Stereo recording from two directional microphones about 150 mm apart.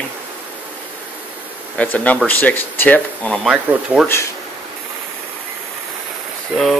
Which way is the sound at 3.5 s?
10° right (ahead or behind).